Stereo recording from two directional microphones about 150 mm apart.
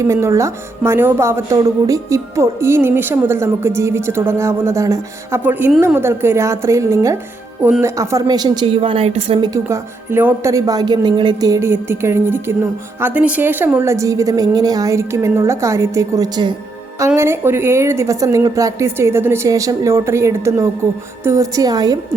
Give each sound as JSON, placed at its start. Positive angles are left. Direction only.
{"t": 0.0, "sound": "a woman's voice", "side_deg": -20}
{"t": 9.4, "sound": "a woman's voice", "side_deg": -20}
{"t": 17.2, "sound": "a woman's voice", "side_deg": -15}